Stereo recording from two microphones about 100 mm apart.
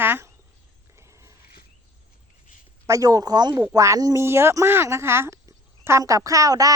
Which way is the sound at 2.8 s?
35° right (ahead or behind).